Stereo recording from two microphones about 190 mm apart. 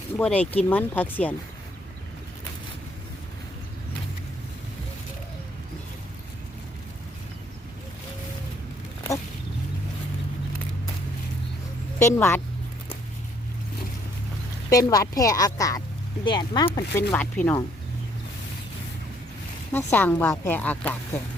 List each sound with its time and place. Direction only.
0.2 s speech: 10° left (ahead or behind)
11.9 s speech: 15° left (ahead or behind)
14.7 s speech: 20° left (ahead or behind)
16.9 s speech: 10° left (ahead or behind)
19.7 s speech: 10° left (ahead or behind)